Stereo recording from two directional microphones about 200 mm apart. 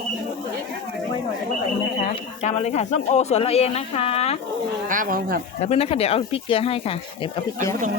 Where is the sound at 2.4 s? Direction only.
35° left (ahead or behind).